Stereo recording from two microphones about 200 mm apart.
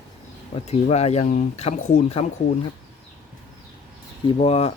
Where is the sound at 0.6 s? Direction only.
30° left (ahead or behind).